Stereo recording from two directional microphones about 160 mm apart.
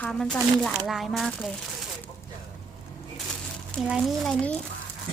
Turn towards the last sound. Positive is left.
turn(degrees=0)  # may be behind; listen again after turning